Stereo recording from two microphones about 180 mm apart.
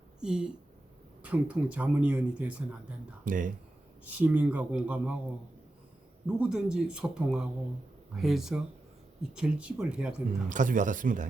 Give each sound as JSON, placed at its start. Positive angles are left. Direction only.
{"t": 0.2, "sound": "speech", "side_deg": -5}
{"t": 3.2, "sound": "speech", "side_deg": -45}
{"t": 4.1, "sound": "speech", "side_deg": -10}
{"t": 6.2, "sound": "speech", "side_deg": -5}
{"t": 10.5, "sound": "speech", "side_deg": -45}